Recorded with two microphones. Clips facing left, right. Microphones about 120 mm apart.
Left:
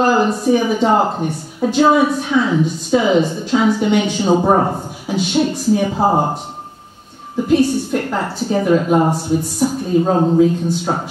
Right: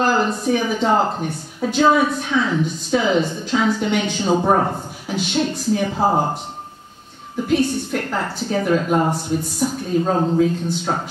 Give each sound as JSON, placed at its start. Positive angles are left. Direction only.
{"t": 0.1, "sound": "a woman's voice", "side_deg": 10}
{"t": 7.4, "sound": "a woman's voice", "side_deg": 5}